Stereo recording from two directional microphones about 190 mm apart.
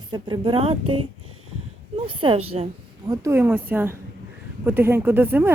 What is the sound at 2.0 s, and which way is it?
Speech, 25° right (ahead or behind).